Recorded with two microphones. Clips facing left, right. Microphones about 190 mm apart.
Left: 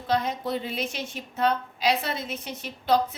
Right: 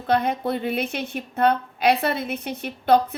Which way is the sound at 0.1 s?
60° right (ahead or behind).